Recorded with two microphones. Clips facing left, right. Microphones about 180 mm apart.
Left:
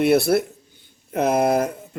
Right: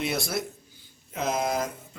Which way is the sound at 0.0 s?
60° left (ahead or behind).